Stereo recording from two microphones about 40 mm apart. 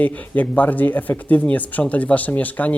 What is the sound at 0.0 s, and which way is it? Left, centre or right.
Speech, left.